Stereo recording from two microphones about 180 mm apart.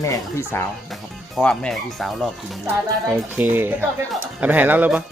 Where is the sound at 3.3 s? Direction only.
10° right (ahead or behind).